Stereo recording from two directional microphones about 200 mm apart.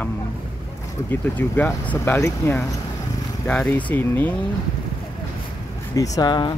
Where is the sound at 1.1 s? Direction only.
10° left (ahead or behind).